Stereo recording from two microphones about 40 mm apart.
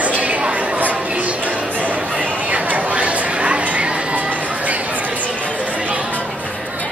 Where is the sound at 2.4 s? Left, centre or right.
Right.